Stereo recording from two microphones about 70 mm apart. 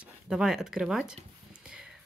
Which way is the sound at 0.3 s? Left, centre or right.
Centre.